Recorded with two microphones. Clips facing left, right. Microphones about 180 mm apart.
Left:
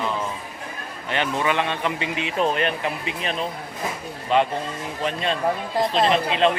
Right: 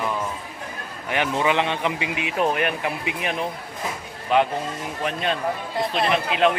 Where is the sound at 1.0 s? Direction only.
15° right (ahead or behind).